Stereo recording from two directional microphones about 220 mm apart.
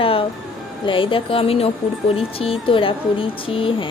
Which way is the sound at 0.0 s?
25° left (ahead or behind).